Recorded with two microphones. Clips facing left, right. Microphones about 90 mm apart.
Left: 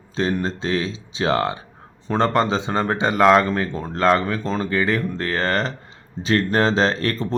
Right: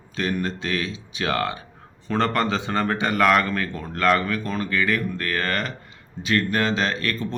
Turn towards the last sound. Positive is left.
turn(degrees=30)  # may be behind; listen again after turning